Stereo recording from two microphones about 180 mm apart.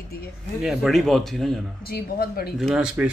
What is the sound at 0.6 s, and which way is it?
Speech, centre (ahead or behind).